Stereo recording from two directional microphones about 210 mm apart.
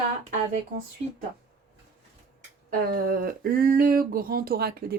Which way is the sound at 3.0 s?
45° right (ahead or behind).